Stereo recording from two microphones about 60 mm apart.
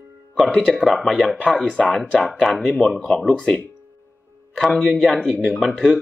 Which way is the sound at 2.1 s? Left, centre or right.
Centre.